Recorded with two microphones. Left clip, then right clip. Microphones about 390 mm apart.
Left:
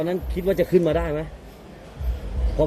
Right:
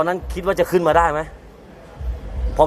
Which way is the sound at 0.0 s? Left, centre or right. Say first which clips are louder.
Right 4 dB; right.